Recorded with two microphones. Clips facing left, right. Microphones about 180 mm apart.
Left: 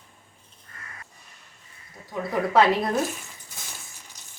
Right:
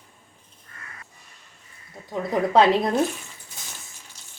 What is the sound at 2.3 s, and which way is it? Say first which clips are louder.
Speech: right 2 dB; 20° right (ahead or behind).